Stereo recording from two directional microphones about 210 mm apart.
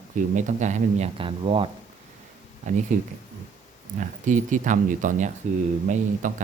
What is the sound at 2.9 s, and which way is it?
Speech, 35° right (ahead or behind).